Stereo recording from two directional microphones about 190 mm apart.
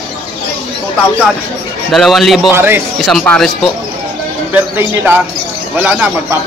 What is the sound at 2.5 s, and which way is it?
Speech, 10° right (ahead or behind).